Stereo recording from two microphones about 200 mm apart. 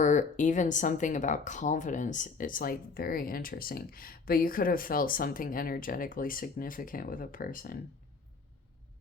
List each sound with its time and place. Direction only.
0.0 s speech: 40° left (ahead or behind)